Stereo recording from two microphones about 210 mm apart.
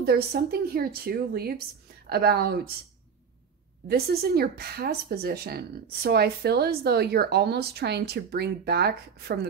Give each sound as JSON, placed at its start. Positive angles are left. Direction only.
{"t": 0.0, "sound": "speech", "side_deg": -50}
{"t": 3.8, "sound": "speech", "side_deg": -50}